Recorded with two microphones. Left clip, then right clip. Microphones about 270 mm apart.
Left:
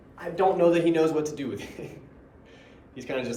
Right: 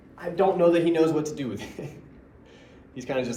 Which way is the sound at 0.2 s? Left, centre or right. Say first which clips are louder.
Right 1 dB; centre.